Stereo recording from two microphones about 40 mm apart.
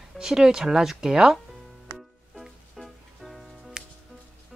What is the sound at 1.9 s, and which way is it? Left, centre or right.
Music, centre.